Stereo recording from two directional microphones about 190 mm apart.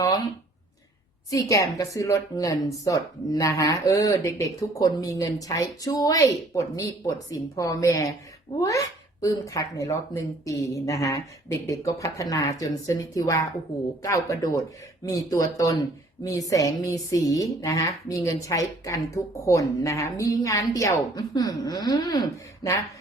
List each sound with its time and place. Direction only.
1.3 s a woman's voice: 15° left (ahead or behind)